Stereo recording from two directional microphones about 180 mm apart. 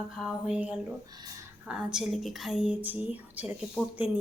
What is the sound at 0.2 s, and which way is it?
A woman's voice, centre (ahead or behind).